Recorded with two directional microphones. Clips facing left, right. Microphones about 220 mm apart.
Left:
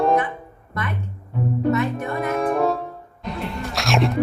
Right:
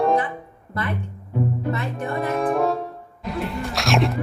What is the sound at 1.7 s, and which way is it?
Music, 30° right (ahead or behind).